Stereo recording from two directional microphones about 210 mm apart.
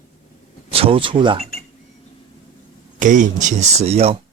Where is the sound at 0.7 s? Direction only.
25° right (ahead or behind).